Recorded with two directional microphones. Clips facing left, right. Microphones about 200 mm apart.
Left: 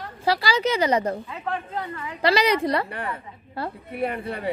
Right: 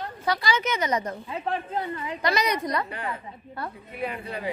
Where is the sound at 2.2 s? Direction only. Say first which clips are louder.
Left 6 dB; 30° left (ahead or behind).